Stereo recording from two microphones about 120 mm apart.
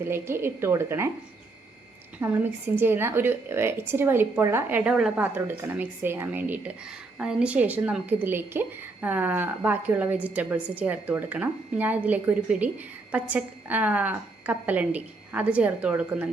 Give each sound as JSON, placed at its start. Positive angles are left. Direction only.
{"t": 0.0, "sound": "a woman's voice", "side_deg": -20}
{"t": 2.1, "sound": "a woman's voice", "side_deg": -15}